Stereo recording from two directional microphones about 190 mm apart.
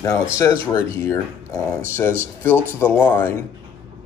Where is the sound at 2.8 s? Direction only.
10° left (ahead or behind).